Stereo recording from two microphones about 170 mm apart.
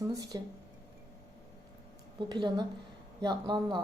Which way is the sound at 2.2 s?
25° right (ahead or behind).